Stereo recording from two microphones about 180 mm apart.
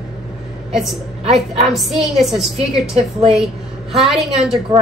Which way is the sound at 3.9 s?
Centre (ahead or behind).